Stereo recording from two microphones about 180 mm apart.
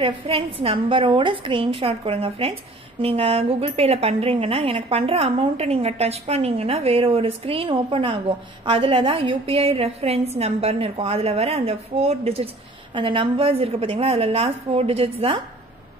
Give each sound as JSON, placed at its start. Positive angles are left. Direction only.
{"t": 0.0, "sound": "a woman's voice", "side_deg": -30}